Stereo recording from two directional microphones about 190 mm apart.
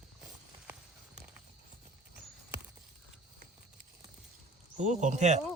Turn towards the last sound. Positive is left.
turn(degrees=-35)  # may be behind; listen again after turning